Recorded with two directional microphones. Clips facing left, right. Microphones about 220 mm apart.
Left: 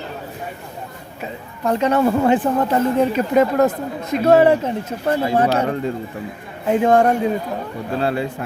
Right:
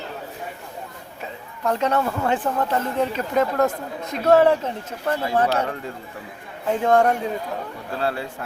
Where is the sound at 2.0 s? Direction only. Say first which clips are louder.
Left 7 dB; 25° left (ahead or behind); by 7.1 s 5° left (ahead or behind).